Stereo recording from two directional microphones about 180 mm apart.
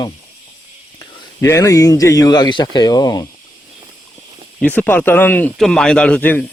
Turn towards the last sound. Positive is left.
turn(degrees=10)  # may be behind; listen again after turning